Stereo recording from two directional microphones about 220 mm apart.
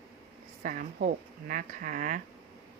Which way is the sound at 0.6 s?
40° right (ahead or behind).